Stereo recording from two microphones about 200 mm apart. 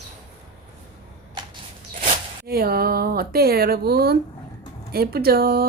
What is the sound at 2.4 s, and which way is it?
Speech, 50° right (ahead or behind).